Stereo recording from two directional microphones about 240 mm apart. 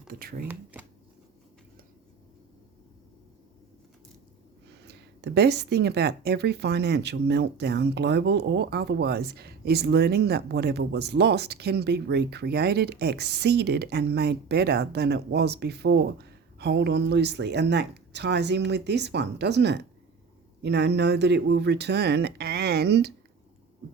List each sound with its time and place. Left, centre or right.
0.1 s speech: right
0.4 s speech: centre
4.9 s speech: right